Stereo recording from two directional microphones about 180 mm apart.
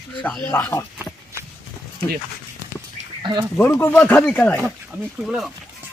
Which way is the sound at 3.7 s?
10° left (ahead or behind).